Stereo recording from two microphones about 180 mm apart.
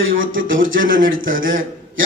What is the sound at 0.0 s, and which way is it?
Speech, 90° right.